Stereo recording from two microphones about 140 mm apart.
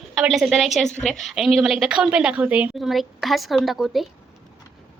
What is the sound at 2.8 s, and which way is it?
A woman's voice, centre (ahead or behind).